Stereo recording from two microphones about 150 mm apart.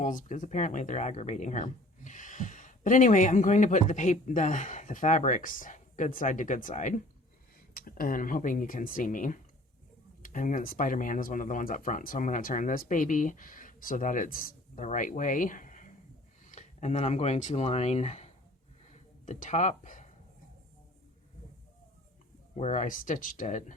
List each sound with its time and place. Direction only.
0.0 s speech: 55° left (ahead or behind)
7.7 s speech: 80° left; by 20.1 s 55° left (ahead or behind)
22.5 s speech: 50° left (ahead or behind)